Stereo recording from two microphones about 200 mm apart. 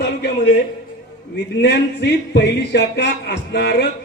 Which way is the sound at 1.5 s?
60° left (ahead or behind).